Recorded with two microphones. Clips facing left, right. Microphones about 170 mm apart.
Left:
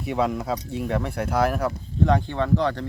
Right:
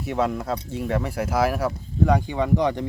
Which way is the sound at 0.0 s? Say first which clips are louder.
Even; centre (ahead or behind).